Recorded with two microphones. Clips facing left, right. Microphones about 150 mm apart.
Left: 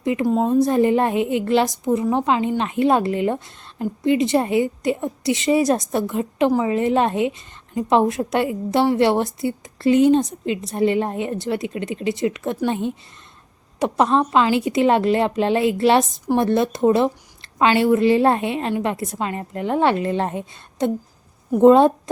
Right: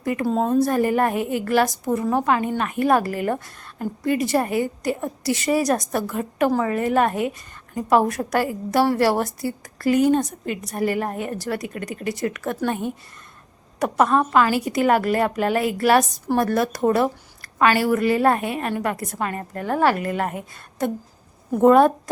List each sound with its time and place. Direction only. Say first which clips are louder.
0.0 s a woman's voice: left 3 dB; 20° left (ahead or behind)